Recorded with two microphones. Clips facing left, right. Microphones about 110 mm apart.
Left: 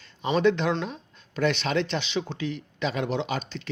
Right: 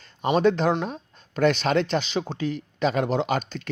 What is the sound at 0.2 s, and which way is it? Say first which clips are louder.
Speech: right 2 dB; 45° right (ahead or behind).